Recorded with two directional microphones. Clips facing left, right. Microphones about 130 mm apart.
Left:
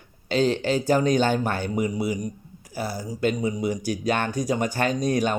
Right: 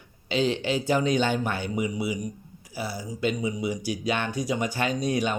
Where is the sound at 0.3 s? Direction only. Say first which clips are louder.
Left 3 dB; 40° left (ahead or behind).